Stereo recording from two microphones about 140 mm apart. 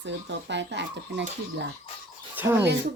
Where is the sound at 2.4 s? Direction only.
15° right (ahead or behind).